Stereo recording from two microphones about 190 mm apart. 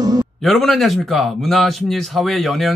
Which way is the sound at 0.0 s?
20° right (ahead or behind).